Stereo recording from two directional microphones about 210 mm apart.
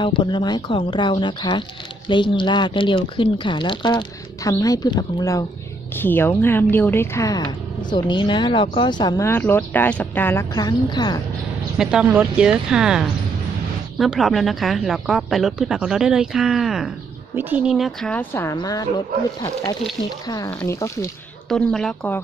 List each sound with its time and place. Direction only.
0.0 s a woman's voice: 20° left (ahead or behind)
11.8 s speech: 5° right (ahead or behind); by 18.9 s 15° left (ahead or behind)
20.2 s a woman's voice: 15° left (ahead or behind)
21.5 s speech: centre (ahead or behind)